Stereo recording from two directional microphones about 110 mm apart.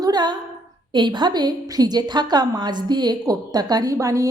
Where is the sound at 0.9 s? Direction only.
45° right (ahead or behind).